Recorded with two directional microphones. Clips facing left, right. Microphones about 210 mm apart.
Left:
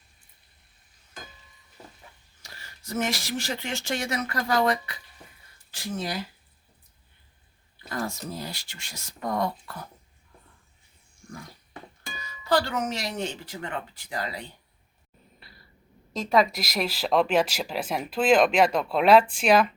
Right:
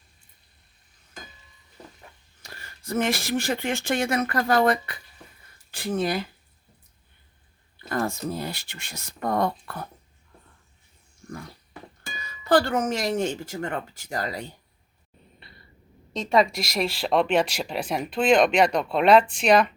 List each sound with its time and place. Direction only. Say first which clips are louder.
2.4 s speech: right 4 dB; 55° right (ahead or behind)
7.9 s speech: right 5 dB; 55° right (ahead or behind)
12.5 s speech: right 4 dB; 50° right (ahead or behind)
15.4 s cough: right 2 dB; centre (ahead or behind)
16.1 s speech: right 1 dB; 5° left (ahead or behind)